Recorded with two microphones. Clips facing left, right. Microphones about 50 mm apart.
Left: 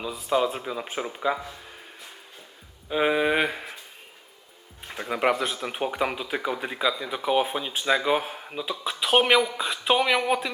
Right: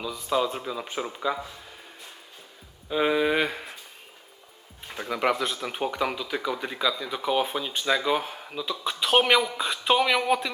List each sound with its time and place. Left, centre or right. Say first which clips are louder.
0.2 s speech: left 2 dB; centre
2.9 s speech: left 1 dB; centre
4.9 s speech: left 2 dB; centre
5.3 s speech: left 1 dB; centre
5.9 s speech: left 1 dB; centre
8.8 s speech: left 1 dB; centre